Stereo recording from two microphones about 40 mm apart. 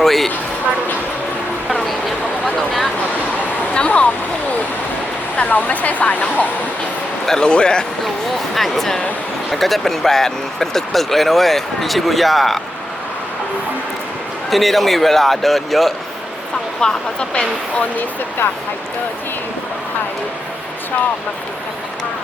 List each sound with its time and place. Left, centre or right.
0.0 s a sound: centre
2.4 s a sound: centre
3.8 s stream: left
5.5 s speech: left
7.3 s speech: left
8.5 s speech: centre
14.5 s speech: centre
16.8 s speech: left